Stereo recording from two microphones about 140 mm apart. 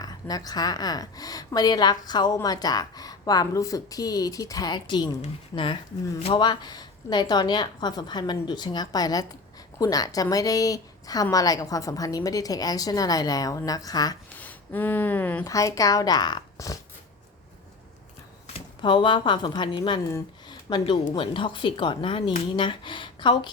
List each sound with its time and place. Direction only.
0.0 s a woman's voice: 25° left (ahead or behind)
6.2 s a woman's voice: 35° left (ahead or behind)
14.3 s speech: 10° left (ahead or behind)
15.4 s a woman's voice: 25° left (ahead or behind)
18.4 s speech: 40° left (ahead or behind)